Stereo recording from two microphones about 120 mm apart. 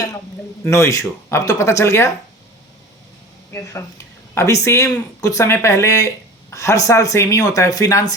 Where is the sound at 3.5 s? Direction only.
20° left (ahead or behind).